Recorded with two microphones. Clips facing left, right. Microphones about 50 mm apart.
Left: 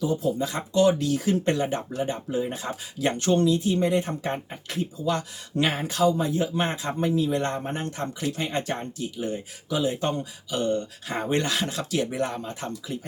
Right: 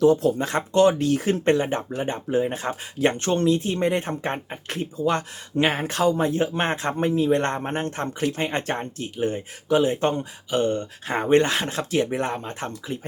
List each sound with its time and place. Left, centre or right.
0.0 s speech: right